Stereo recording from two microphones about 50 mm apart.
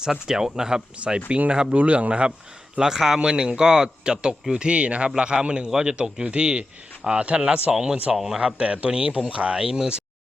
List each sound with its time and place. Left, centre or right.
0.0 s speech: centre
1.7 s speech: right
2.7 s speech: centre
8.1 s speech: centre
8.4 s speech: right